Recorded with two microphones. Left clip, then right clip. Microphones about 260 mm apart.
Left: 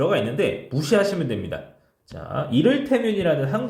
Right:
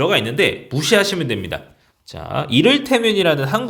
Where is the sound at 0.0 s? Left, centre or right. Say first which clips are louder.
Right 5 dB; centre.